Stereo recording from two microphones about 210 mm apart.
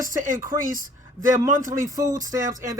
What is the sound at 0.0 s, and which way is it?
Speech, 40° right (ahead or behind).